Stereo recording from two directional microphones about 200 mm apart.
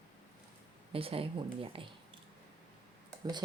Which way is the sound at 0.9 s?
30° right (ahead or behind).